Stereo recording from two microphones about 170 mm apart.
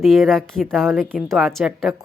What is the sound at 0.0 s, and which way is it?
Speech, centre (ahead or behind).